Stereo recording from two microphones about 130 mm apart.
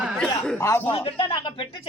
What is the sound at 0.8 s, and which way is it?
Speech, 45° left (ahead or behind).